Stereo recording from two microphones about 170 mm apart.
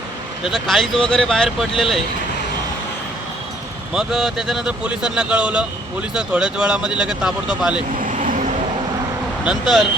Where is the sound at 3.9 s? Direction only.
5° right (ahead or behind).